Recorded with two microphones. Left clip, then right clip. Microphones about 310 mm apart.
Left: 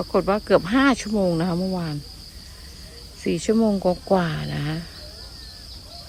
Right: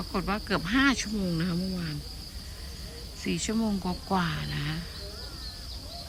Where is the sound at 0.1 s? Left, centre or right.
Centre.